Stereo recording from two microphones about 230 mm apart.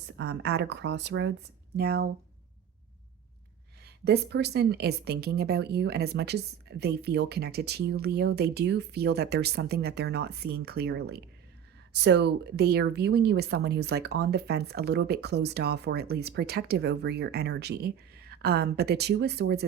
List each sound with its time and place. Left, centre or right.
0.2 s speech: right
3.8 s speech: right